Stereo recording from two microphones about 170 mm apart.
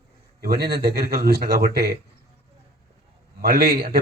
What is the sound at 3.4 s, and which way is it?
Speech, 65° right (ahead or behind).